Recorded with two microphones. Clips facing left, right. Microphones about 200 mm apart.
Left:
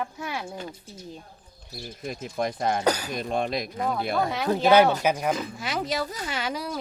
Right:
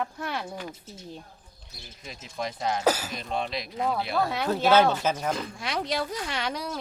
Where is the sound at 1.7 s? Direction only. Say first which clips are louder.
Left 10 dB; 50° left (ahead or behind).